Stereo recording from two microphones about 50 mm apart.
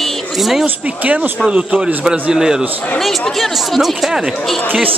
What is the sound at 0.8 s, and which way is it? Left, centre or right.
A man's voice, right.